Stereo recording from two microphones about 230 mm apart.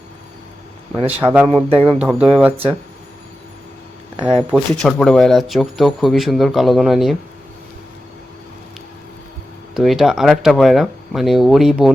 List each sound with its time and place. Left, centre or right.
1.2 s speech: centre
1.7 s speech: right
2.0 s speech: centre
4.4 s speech: centre
9.7 s speech: centre